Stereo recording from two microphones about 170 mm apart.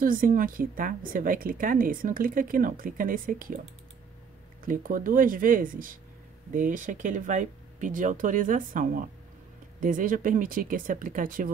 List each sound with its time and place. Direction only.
0.0 s a woman's voice: 55° right (ahead or behind)
4.6 s a woman's voice: 55° right (ahead or behind)